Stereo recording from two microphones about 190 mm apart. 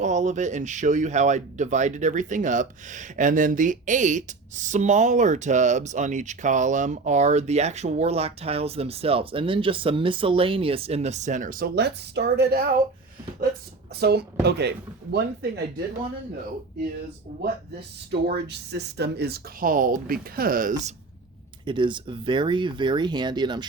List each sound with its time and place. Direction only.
0.0 s speech: 40° right (ahead or behind)
14.0 s speech: 60° right (ahead or behind)
17.4 s speech: 60° right (ahead or behind); by 20.9 s 40° right (ahead or behind)
21.6 s speech: 25° right (ahead or behind)